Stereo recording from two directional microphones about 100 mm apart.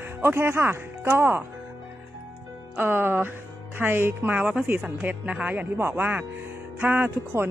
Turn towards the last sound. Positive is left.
turn(degrees=-20)  # may be behind; listen again after turning